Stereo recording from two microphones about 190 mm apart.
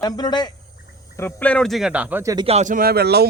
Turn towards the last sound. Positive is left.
turn(degrees=-60)  # may be behind; listen again after turning